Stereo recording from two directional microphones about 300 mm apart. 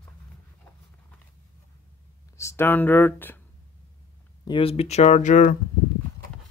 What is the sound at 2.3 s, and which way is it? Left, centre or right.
Speech, centre.